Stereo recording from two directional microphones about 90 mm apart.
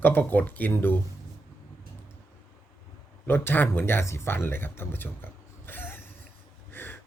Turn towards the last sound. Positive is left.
turn(degrees=25)  # may be behind; listen again after turning